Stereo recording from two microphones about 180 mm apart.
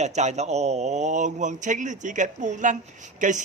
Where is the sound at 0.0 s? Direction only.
40° right (ahead or behind).